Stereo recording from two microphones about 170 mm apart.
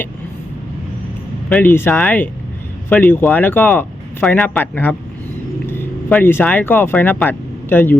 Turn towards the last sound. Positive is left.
turn(degrees=10)  # may be behind; listen again after turning